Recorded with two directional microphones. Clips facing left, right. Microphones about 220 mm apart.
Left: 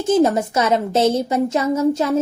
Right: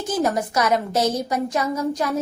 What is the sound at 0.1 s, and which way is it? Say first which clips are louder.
A woman's voice: left 7 dB; 25° left (ahead or behind).